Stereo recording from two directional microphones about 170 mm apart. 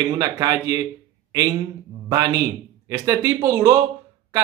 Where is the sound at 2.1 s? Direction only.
20° right (ahead or behind).